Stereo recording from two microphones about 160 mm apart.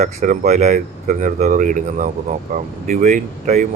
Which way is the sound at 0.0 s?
45° right (ahead or behind).